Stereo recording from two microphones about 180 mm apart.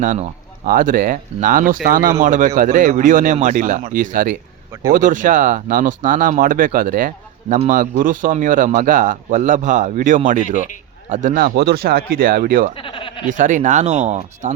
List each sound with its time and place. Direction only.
0.0 s speech: 45° right (ahead or behind)
12.7 s speech: 30° left (ahead or behind)
13.3 s speech: 45° right (ahead or behind)